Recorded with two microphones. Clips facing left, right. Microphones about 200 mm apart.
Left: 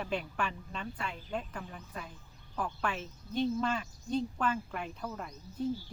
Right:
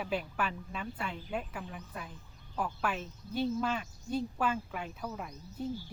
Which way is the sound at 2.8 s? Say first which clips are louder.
Right 1 dB; 5° right (ahead or behind).